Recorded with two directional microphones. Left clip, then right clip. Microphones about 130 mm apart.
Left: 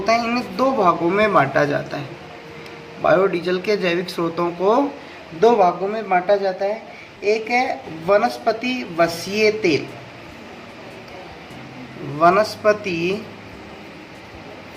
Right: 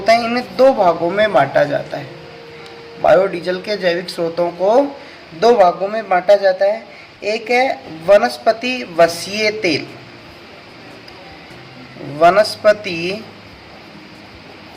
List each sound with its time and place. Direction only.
0.0 s a sound: 30° right (ahead or behind)
1.1 s speech: 5° right (ahead or behind)
3.2 s speech: 10° right (ahead or behind)
5.4 s a man's voice: 35° right (ahead or behind)
12.2 s speech: 30° right (ahead or behind)